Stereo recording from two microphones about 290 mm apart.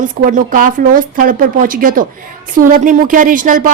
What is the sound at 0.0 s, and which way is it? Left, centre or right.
Speech, right.